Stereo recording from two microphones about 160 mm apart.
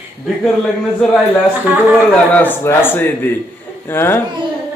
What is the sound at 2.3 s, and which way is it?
Speech, 10° left (ahead or behind).